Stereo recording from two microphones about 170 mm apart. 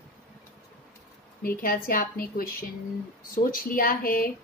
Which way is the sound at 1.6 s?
60° left (ahead or behind).